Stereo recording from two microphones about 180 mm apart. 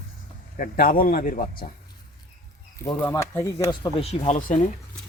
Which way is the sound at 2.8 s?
15° left (ahead or behind).